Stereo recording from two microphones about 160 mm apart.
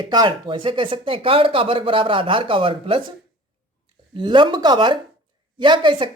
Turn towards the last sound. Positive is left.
turn(degrees=-30)  # may be behind; listen again after turning